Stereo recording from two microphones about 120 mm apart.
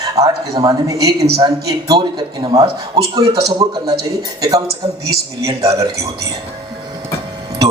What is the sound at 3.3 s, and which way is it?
Speech, 55° right (ahead or behind).